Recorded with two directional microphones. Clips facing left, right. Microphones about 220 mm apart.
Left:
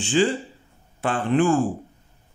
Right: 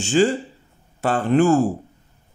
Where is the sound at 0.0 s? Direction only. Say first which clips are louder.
Right 3 dB; 45° right (ahead or behind).